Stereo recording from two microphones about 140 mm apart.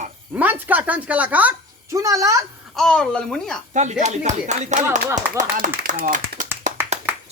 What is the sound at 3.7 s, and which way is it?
Speech, 55° right (ahead or behind).